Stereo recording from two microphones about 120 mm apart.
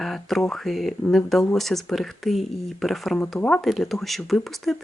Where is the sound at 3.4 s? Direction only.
15° left (ahead or behind).